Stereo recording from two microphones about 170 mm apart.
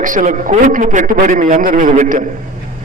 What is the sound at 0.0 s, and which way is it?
A man's voice, 50° right (ahead or behind).